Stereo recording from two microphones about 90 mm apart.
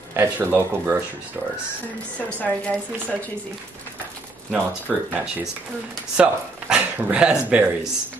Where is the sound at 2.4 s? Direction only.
15° left (ahead or behind).